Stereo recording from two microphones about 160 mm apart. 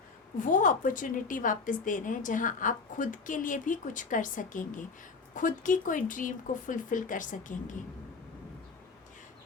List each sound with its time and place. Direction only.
0.4 s a woman's voice: 55° left (ahead or behind)